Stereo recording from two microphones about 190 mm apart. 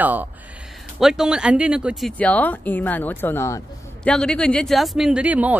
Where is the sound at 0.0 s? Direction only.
10° right (ahead or behind).